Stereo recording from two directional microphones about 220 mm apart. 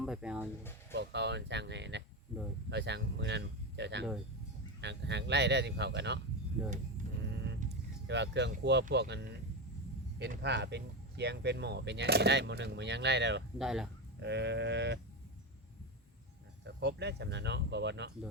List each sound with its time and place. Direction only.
0.0 s speech: 5° right (ahead or behind)
0.9 s speech: 50° right (ahead or behind)
6.6 s speech: centre (ahead or behind)
7.0 s printer: 35° right (ahead or behind)
8.0 s speech: 50° right (ahead or behind)
13.6 s speech: centre (ahead or behind)
14.2 s speech: 50° right (ahead or behind)
16.6 s speech: 50° right (ahead or behind)